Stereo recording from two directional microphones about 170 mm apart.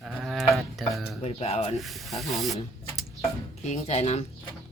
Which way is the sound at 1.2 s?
35° left (ahead or behind).